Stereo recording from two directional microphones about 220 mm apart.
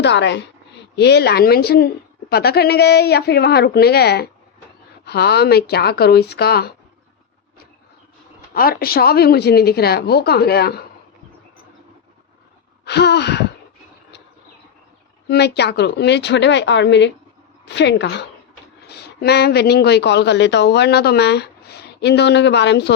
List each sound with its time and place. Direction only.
0.0 s a woman's voice: 50° left (ahead or behind)
8.5 s a woman's voice: 40° left (ahead or behind)
12.8 s a sound: 50° left (ahead or behind)
15.3 s a woman's voice: 50° left (ahead or behind)